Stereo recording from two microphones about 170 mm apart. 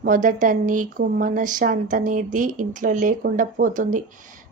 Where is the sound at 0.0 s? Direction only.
50° right (ahead or behind).